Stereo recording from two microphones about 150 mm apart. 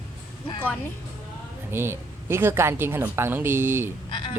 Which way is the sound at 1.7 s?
15° right (ahead or behind).